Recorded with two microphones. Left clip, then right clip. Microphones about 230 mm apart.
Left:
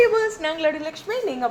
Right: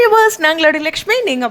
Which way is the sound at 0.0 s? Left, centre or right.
Right.